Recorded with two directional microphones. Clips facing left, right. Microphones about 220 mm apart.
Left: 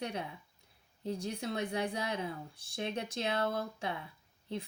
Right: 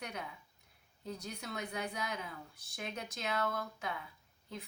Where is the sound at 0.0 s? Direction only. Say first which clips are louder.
Left 6 dB; 30° left (ahead or behind).